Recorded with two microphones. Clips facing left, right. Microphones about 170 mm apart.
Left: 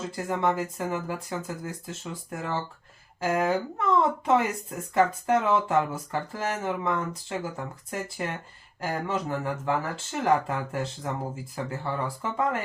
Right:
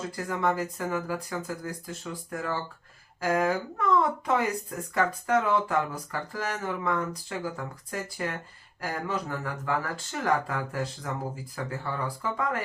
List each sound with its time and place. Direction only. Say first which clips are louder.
0.2 s speech: left 2 dB; 25° left (ahead or behind)